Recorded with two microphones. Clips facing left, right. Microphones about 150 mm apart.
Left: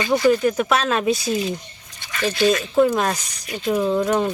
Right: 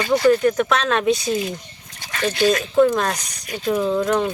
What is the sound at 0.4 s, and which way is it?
Speech, 5° left (ahead or behind).